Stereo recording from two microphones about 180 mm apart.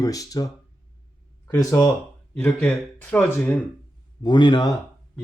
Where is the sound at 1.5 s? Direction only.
20° left (ahead or behind).